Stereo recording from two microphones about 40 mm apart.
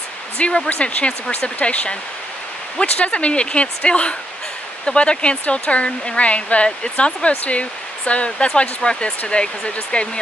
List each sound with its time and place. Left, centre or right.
0.4 s speech: left